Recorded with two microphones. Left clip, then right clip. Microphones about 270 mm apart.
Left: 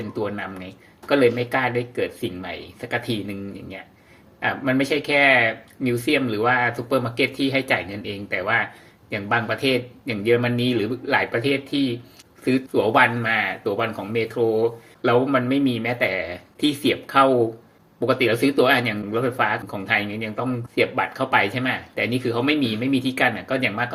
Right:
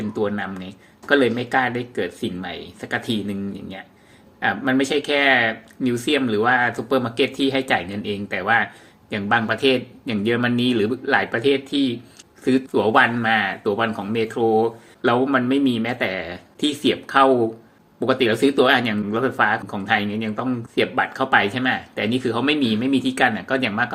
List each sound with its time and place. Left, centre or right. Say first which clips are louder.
0.1 s speech: right 4 dB; centre